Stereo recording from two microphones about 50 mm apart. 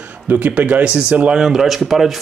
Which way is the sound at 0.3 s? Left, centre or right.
Right.